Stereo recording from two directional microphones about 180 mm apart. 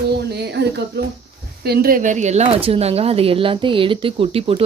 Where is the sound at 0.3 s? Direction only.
65° right (ahead or behind).